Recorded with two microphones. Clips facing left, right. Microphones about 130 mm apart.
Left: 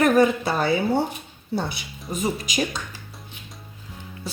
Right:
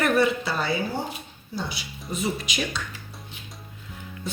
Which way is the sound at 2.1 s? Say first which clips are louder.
Left 3 dB; 40° left (ahead or behind).